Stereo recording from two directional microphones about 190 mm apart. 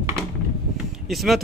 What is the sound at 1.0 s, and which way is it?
Speech, centre (ahead or behind).